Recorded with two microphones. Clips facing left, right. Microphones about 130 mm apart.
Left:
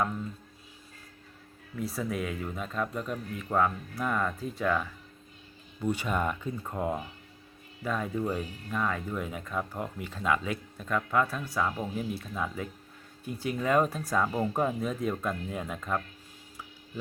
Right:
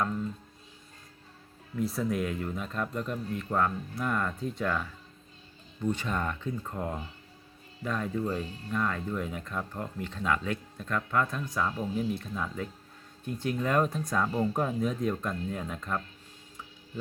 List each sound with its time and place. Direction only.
1.7 s speech: centre (ahead or behind)
8.4 s speech: 30° right (ahead or behind)
8.7 s speech: 5° left (ahead or behind)